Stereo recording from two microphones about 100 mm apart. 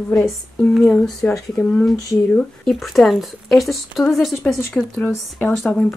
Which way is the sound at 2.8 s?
Centre (ahead or behind).